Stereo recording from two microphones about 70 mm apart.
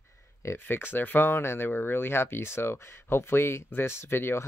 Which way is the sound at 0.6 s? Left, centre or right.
Left.